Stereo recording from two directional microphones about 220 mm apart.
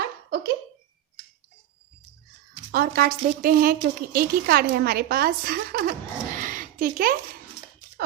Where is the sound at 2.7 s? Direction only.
40° right (ahead or behind).